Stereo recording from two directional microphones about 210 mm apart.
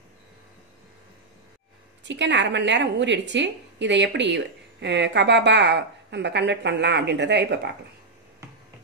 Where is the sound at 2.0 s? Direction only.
60° right (ahead or behind).